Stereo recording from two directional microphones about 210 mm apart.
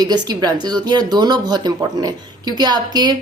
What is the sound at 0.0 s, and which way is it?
Speech, 20° right (ahead or behind).